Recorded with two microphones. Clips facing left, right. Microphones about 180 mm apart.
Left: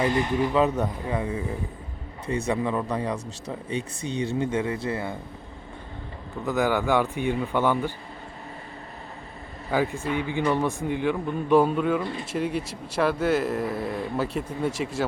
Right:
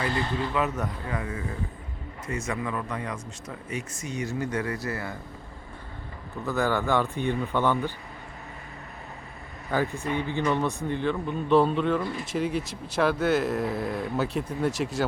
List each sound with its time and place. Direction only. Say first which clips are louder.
0.0 s a man's voice: left 5 dB; 15° left (ahead or behind)
0.5 s speech: left 5 dB; 30° left (ahead or behind)
6.4 s a man's voice: left 2 dB; 15° left (ahead or behind)
9.7 s a man's voice: left 2 dB; 10° left (ahead or behind)
12.0 s speech: even; 25° left (ahead or behind)
12.3 s speech: even; centre (ahead or behind)